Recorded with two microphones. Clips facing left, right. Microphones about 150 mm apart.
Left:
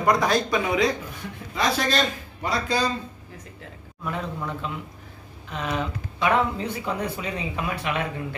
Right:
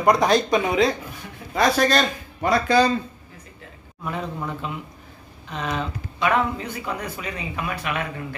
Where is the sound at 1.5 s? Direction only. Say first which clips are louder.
Right 5 dB; 45° right (ahead or behind).